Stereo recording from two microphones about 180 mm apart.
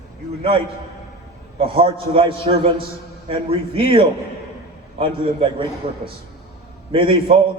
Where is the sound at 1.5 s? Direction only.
30° right (ahead or behind).